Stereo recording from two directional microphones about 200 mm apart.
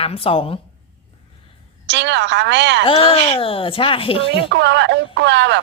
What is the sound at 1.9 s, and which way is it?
Speech, 60° right (ahead or behind).